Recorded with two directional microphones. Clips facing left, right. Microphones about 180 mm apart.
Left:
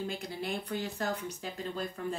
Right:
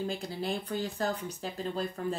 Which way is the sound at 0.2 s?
35° right (ahead or behind).